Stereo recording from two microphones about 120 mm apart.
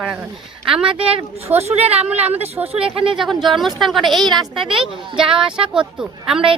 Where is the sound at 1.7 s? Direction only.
60° right (ahead or behind).